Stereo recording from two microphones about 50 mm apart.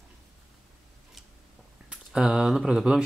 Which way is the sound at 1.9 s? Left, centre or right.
Centre.